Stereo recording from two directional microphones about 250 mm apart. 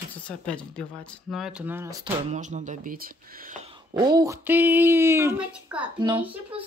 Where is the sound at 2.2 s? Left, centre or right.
Right.